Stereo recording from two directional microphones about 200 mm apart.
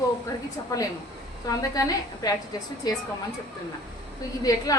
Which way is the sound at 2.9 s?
20° left (ahead or behind).